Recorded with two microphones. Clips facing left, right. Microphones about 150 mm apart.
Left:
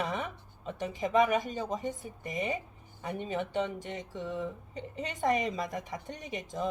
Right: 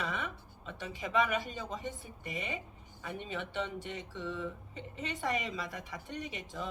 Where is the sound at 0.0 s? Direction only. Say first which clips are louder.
Left 4 dB; 45° left (ahead or behind).